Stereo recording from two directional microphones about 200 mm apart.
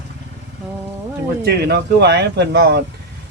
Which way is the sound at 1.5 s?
55° right (ahead or behind).